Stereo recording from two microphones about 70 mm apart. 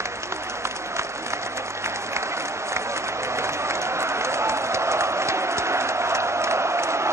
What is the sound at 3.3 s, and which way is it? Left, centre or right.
Applause, right.